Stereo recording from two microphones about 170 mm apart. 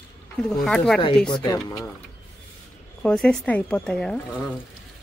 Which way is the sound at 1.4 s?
25° left (ahead or behind).